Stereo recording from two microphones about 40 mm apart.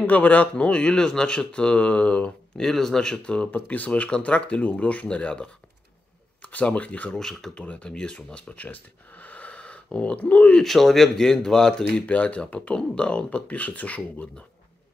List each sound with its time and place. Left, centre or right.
0.0 s speech: left
0.6 s speech: left
2.5 s speech: centre
3.5 s speech: left
7.1 s a man's voice: centre
7.5 s speech: left
7.9 s speech: left
9.2 s a sound: left
10.2 s speech: left
10.6 s a man's voice: centre
12.1 s speech: left